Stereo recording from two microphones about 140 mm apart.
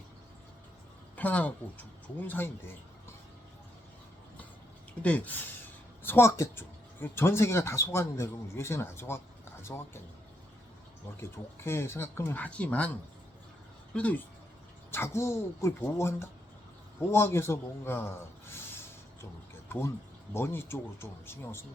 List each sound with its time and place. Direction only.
1.1 s speech: 10° left (ahead or behind)
5.0 s speech: 10° left (ahead or behind)
11.2 s speech: 15° left (ahead or behind)
19.2 s a sound: 15° left (ahead or behind)
20.3 s speech: 15° left (ahead or behind)